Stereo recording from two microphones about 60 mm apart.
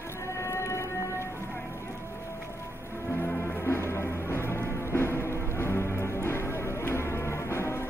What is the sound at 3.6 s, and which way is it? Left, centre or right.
Music, left.